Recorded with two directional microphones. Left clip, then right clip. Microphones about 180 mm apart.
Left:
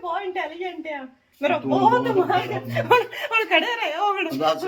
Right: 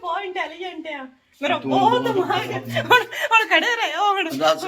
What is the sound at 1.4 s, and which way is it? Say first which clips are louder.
Speech: right 1 dB; centre (ahead or behind).